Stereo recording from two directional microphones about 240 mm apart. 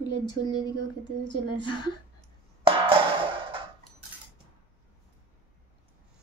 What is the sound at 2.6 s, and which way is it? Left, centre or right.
Music, right.